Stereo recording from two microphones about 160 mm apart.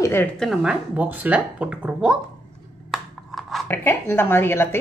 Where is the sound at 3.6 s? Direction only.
15° left (ahead or behind).